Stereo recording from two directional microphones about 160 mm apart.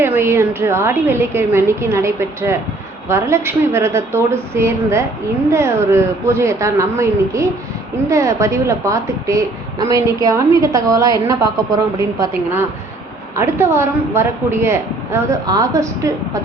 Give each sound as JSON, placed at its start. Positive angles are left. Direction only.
{"t": 0.0, "sound": "a woman's voice", "side_deg": -15}
{"t": 13.3, "sound": "a woman's voice", "side_deg": -15}